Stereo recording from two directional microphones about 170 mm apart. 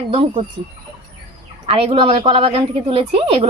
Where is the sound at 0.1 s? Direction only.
30° right (ahead or behind).